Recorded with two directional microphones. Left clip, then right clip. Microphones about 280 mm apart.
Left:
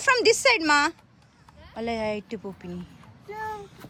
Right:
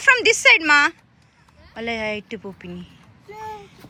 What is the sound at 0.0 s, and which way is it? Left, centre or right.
A woman's voice, centre.